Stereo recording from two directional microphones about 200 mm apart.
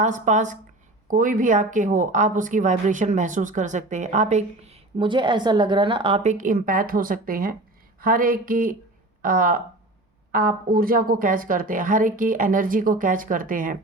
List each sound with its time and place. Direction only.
0.0 s a woman's voice: 40° right (ahead or behind)